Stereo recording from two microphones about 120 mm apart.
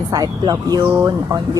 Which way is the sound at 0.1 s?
35° right (ahead or behind).